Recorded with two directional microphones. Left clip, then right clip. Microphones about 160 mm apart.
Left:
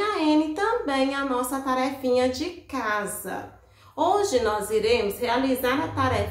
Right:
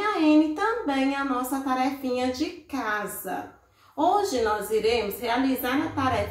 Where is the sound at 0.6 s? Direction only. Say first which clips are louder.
Left 2 dB; 20° left (ahead or behind).